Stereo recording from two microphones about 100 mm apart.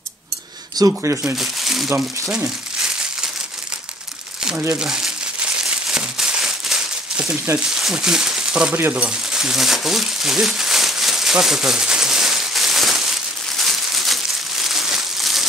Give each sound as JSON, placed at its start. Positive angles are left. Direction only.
{"t": 0.7, "sound": "speech", "side_deg": -30}
{"t": 1.3, "sound": "speech", "side_deg": 0}
{"t": 2.2, "sound": "crumpling", "side_deg": -5}
{"t": 4.7, "sound": "crumpling", "side_deg": -5}
{"t": 7.5, "sound": "speech", "side_deg": -5}
{"t": 8.7, "sound": "crumpling", "side_deg": -15}
{"t": 13.6, "sound": "a sound", "side_deg": 0}